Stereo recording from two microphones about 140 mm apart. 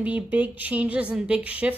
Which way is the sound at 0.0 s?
10° right (ahead or behind).